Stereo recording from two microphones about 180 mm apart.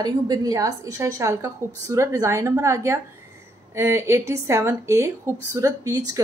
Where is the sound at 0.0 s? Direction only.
20° right (ahead or behind).